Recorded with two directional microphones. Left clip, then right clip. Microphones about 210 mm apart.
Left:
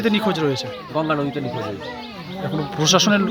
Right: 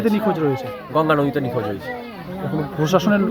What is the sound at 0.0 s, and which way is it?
Speech, 10° left (ahead or behind).